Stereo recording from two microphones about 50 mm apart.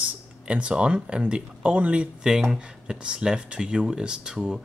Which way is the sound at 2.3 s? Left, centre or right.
Centre.